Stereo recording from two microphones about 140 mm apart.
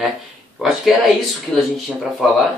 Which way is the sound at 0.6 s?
Centre (ahead or behind).